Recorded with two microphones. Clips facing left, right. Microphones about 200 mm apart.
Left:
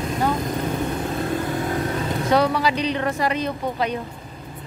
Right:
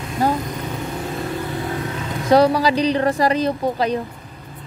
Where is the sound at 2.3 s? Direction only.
35° right (ahead or behind).